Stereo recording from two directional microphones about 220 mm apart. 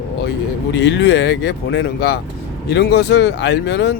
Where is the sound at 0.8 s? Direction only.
50° left (ahead or behind).